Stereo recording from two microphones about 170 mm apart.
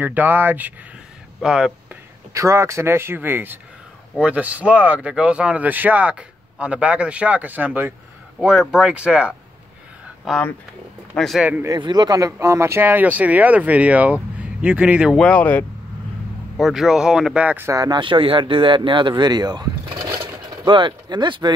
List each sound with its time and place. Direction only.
0.0 s speech: 10° right (ahead or behind)
2.3 s speech: 20° right (ahead or behind)
11.7 s speech: 25° right (ahead or behind)